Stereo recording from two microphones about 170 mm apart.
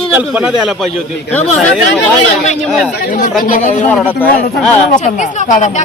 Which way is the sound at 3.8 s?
10° left (ahead or behind).